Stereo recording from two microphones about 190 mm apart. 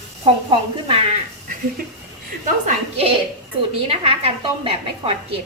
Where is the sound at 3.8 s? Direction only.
30° right (ahead or behind).